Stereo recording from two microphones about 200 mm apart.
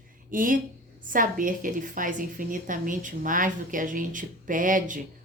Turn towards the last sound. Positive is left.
turn(degrees=-40)  # may be behind; listen again after turning